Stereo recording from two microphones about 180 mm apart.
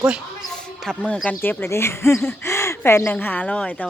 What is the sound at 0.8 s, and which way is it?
Speech, 5° left (ahead or behind).